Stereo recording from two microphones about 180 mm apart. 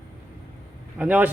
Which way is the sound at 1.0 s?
10° right (ahead or behind).